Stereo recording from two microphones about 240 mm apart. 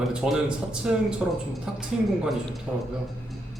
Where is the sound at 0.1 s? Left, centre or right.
Centre.